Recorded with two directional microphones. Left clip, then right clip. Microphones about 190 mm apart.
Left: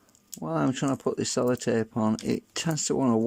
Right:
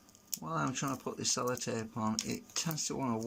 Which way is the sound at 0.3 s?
40° left (ahead or behind).